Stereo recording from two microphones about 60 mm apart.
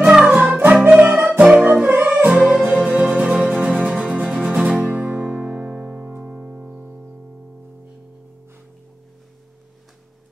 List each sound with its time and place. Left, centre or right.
0.0 s music: centre
0.9 s music: right
1.4 s music: centre